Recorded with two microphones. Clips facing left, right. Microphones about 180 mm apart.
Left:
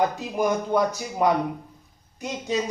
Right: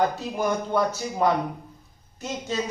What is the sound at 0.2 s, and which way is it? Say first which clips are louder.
Speech: left 2 dB; 15° left (ahead or behind).